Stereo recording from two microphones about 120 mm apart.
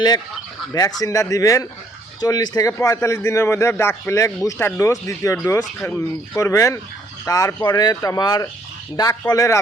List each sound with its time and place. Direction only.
0.7 s a man's voice: 30° left (ahead or behind)